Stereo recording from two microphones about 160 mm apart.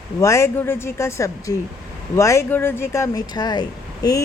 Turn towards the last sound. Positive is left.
turn(degrees=25)  # may be behind; listen again after turning